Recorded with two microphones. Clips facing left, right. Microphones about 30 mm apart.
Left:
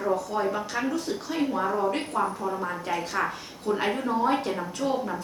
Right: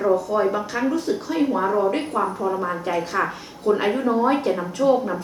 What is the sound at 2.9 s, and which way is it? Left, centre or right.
A woman's voice, centre.